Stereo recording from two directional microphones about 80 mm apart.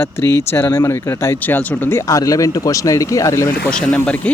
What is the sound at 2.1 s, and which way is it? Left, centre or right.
Speech, left.